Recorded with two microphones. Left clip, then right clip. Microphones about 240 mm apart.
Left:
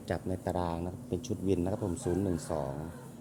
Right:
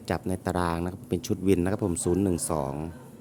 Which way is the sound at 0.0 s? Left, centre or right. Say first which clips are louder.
Right 5 dB; right.